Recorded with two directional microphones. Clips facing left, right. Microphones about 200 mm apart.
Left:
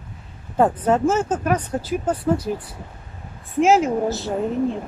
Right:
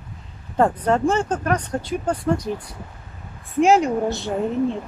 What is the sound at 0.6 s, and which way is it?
Speech, 5° left (ahead or behind).